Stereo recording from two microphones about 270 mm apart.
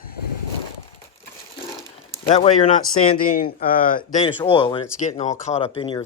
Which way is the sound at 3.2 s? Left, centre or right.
Left.